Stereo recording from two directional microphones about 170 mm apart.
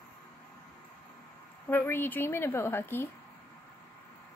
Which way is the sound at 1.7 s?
10° left (ahead or behind).